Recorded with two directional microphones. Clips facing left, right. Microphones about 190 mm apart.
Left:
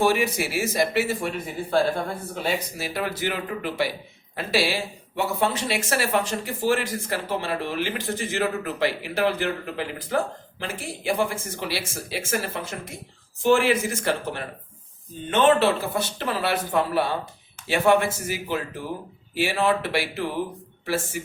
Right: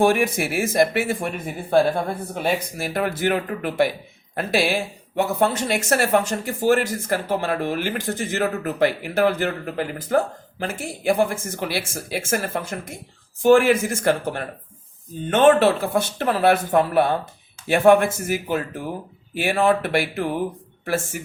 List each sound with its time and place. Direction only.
0.0 s speech: 50° right (ahead or behind)
2.3 s speech: 50° right (ahead or behind)